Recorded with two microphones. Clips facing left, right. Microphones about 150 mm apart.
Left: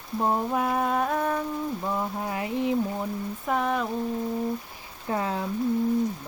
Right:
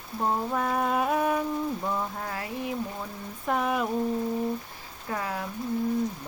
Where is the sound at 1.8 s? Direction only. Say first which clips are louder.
Left 2 dB; 10° left (ahead or behind).